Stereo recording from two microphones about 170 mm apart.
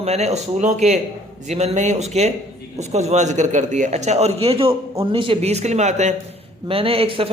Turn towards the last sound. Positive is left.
turn(degrees=-30)  # may be behind; listen again after turning